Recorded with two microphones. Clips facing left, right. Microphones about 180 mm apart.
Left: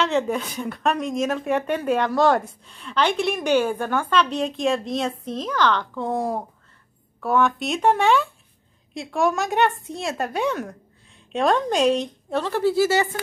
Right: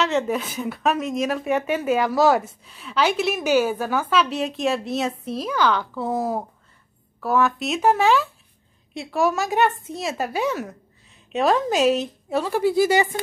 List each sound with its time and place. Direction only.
0.0 s a woman's voice: centre (ahead or behind)